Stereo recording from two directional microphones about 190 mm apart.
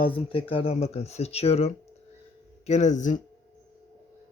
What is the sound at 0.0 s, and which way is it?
Speech, 25° left (ahead or behind).